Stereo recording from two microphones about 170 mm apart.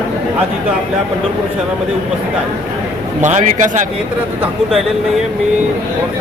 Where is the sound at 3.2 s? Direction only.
45° right (ahead or behind).